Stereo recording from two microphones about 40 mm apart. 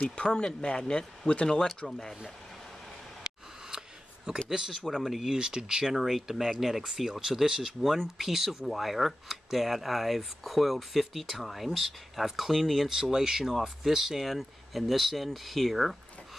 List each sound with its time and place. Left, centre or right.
0.1 s speech: left
1.9 s speech: centre
3.3 s a sound: centre
4.6 s speech: centre
13.0 s speech: centre